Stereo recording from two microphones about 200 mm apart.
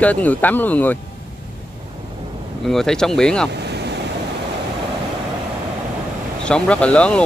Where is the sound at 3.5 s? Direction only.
55° right (ahead or behind).